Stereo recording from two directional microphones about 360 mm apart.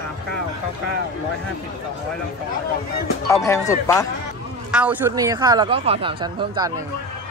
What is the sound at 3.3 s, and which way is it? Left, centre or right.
Speech, centre.